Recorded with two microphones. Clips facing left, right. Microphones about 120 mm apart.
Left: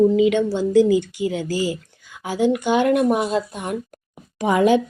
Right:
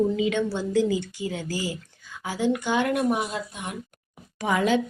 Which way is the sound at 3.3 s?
45° left (ahead or behind).